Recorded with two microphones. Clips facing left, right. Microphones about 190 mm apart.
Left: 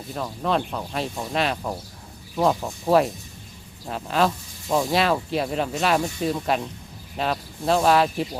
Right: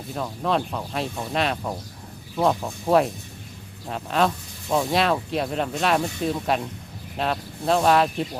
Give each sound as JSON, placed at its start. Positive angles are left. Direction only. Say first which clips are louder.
{"t": 0.1, "sound": "speech", "louder": "even", "side_deg": 0}